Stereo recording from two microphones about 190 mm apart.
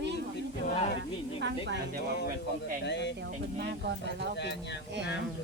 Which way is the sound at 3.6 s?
65° right (ahead or behind).